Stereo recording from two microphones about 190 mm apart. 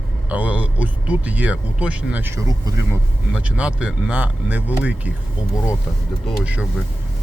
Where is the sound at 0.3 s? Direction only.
10° right (ahead or behind).